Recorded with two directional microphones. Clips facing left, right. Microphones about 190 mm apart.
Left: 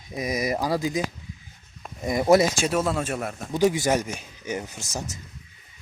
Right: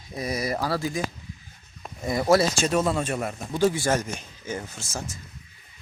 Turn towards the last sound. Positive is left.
turn(degrees=15)  # may be behind; listen again after turning